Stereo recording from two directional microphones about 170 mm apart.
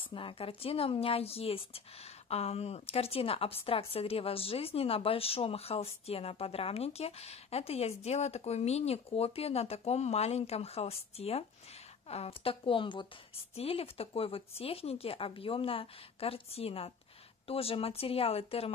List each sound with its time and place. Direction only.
0.0 s speech: 30° left (ahead or behind)